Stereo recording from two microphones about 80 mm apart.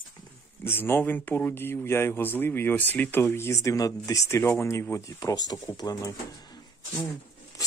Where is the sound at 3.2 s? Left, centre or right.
Left.